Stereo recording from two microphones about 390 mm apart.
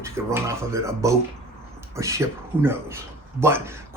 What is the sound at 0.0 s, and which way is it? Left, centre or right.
A man's voice, centre.